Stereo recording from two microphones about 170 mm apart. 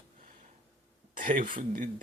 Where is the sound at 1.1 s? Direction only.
50° right (ahead or behind).